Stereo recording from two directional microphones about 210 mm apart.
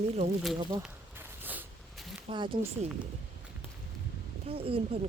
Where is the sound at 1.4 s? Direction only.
10° right (ahead or behind).